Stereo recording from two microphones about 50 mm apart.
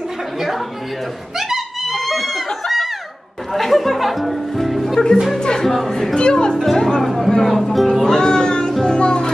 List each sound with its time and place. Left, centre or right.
1.5 s a sound: centre
3.5 s speech: centre
5.4 s speech: centre
6.6 s speech: centre
8.8 s music: centre